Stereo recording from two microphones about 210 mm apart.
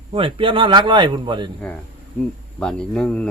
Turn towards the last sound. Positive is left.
turn(degrees=5)  # may be behind; listen again after turning